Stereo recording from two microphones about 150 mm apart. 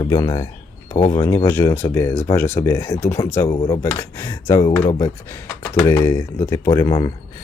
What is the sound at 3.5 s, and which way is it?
Speech, 35° left (ahead or behind).